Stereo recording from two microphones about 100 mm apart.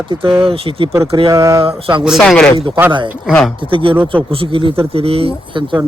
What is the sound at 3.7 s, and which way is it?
Speech, 60° right (ahead or behind).